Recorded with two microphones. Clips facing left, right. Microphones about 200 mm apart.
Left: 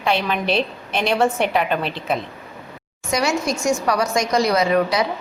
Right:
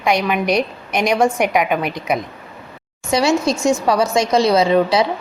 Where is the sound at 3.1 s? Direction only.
25° right (ahead or behind).